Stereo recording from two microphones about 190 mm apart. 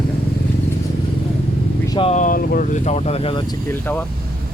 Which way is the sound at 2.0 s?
35° left (ahead or behind).